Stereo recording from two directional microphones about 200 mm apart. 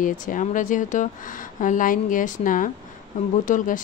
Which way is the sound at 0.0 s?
40° left (ahead or behind).